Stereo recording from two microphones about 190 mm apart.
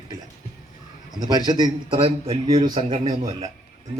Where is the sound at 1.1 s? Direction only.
20° right (ahead or behind).